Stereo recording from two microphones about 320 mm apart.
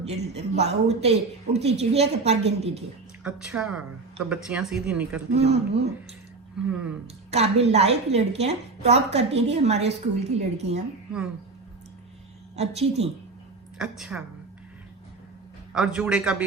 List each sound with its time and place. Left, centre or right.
0.3 s a woman's voice: centre
3.2 s speech: centre
5.3 s a woman's voice: centre
6.7 s speech: centre
7.3 s a woman's voice: centre
12.5 s a woman's voice: centre
13.7 s speech: centre
15.7 s speech: centre